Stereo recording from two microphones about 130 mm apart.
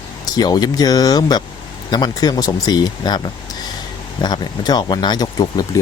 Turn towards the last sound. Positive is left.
turn(degrees=30)  # may be behind; listen again after turning